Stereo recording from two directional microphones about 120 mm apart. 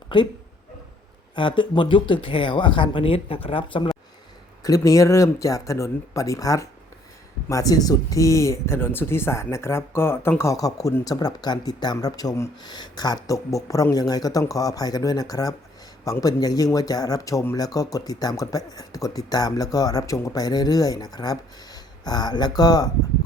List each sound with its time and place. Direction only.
0.1 s speech: 45° left (ahead or behind)
1.4 s speech: 45° left (ahead or behind)
4.6 s speech: 30° left (ahead or behind)